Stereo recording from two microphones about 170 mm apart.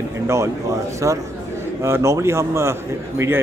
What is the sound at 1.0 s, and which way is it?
A man's voice, 20° right (ahead or behind).